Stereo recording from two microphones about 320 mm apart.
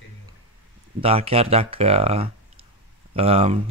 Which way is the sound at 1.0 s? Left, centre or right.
Centre.